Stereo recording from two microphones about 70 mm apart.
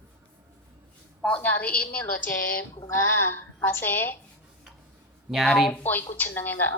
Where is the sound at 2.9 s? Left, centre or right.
Left.